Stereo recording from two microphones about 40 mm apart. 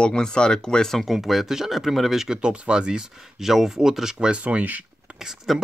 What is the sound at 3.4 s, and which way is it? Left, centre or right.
Speech, centre.